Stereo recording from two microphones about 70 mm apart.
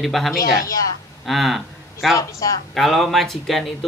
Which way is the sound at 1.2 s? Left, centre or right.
Centre.